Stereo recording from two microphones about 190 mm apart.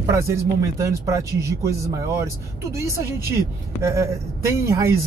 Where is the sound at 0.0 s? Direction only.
15° right (ahead or behind).